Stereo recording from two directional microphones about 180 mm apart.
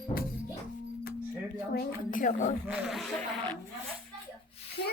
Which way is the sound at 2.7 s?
Centre (ahead or behind).